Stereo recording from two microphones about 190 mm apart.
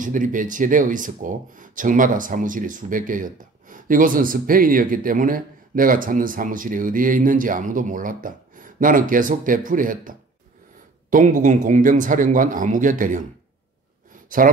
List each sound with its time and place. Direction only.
0.0 s speech: 45° right (ahead or behind)
14.4 s speech: 45° right (ahead or behind)